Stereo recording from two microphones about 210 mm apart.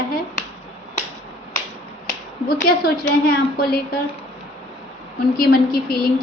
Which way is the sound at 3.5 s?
45° left (ahead or behind).